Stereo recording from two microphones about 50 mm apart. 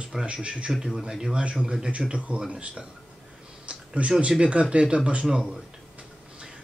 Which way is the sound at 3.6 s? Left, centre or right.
Right.